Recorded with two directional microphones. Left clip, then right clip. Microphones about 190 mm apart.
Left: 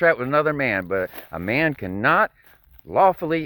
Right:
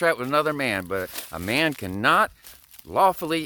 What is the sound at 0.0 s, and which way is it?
Speech, 20° right (ahead or behind).